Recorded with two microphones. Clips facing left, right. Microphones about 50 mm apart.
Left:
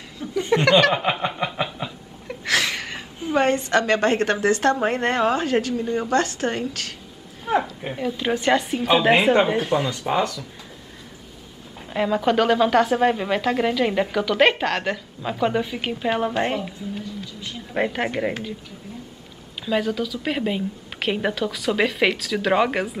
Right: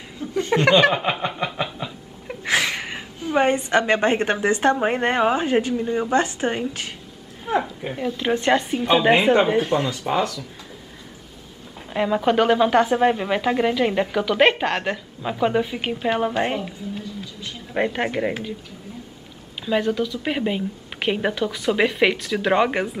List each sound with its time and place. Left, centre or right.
0.2 s chuckle: left
0.7 s snicker: centre
0.9 s a sound: centre
2.2 s a sound: centre
3.3 s a woman's voice: centre
7.8 s a woman's voice: centre
11.9 s a woman's voice: centre
19.6 s a woman's voice: centre